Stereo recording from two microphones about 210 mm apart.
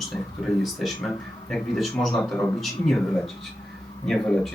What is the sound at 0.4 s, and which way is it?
Speech, centre (ahead or behind).